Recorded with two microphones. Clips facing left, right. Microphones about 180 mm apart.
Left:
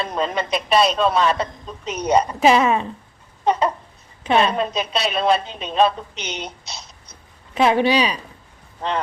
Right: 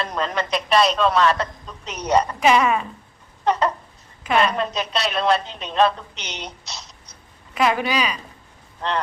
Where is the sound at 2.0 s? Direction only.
30° left (ahead or behind).